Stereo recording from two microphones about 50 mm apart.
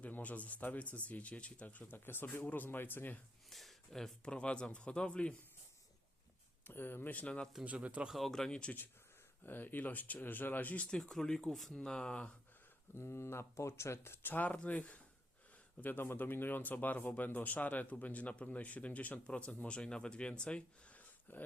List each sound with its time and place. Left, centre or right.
0.0 s speech: left
3.5 s a sound: centre
4.2 s speech: left
6.7 s speech: left
7.1 s speech: left
7.6 s speech: right
8.1 s speech: centre
9.4 s speech: left
10.9 s speech: centre
11.8 s speech: centre
12.9 s speech: left
14.4 s speech: left
21.3 s speech: left